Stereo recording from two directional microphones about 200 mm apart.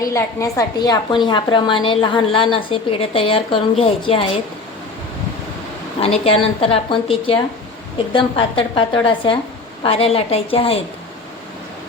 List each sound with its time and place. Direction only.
0.0 s a woman's voice: 15° left (ahead or behind)
6.0 s a woman's voice: 30° left (ahead or behind)